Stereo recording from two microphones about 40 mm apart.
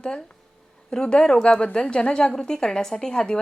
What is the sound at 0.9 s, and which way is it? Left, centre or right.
Speech, left.